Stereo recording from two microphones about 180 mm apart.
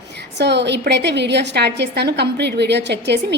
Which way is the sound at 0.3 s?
70° right (ahead or behind).